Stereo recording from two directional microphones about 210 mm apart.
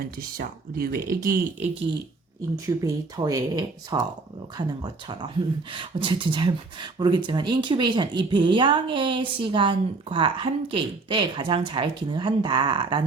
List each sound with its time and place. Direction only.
0.2 s speech: 45° right (ahead or behind)
2.6 s speech: 15° right (ahead or behind)